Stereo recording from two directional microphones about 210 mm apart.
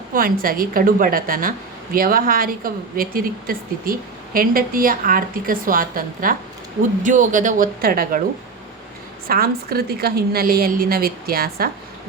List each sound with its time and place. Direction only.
0.1 s a woman's voice: 45° right (ahead or behind)
9.2 s speech: 45° right (ahead or behind)